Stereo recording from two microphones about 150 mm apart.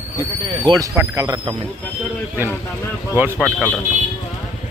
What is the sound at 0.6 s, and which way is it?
Speech, 25° right (ahead or behind).